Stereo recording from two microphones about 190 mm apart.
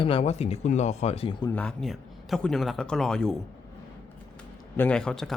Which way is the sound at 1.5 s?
5° left (ahead or behind).